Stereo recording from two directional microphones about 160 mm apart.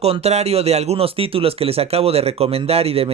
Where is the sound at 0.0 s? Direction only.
40° right (ahead or behind).